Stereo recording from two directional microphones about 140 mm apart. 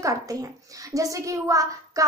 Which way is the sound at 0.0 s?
25° right (ahead or behind).